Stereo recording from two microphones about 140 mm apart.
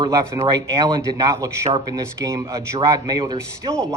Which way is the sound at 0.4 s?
25° right (ahead or behind).